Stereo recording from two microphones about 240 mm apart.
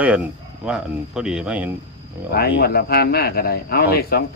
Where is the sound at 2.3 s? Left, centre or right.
Left.